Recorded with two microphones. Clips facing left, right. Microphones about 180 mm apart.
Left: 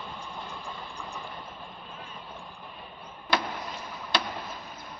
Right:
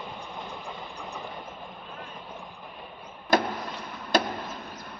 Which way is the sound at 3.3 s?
45° right (ahead or behind).